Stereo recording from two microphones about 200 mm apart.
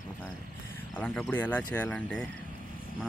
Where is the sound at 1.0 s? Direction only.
10° left (ahead or behind).